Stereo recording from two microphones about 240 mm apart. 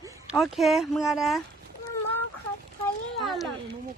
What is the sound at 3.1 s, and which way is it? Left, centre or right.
Speech, centre.